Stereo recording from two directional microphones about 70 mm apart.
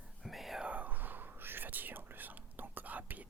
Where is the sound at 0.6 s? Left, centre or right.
Right.